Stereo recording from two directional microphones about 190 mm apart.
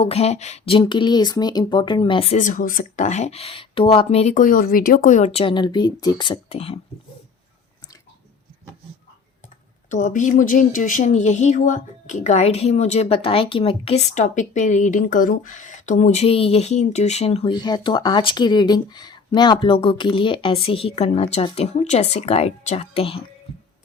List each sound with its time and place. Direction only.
0.0 s speech: 35° left (ahead or behind)
9.9 s speech: 40° left (ahead or behind)